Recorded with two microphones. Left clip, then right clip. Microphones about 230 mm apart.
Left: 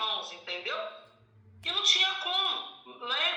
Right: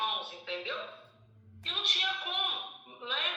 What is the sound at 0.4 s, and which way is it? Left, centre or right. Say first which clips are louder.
Music: left 1 dB; left.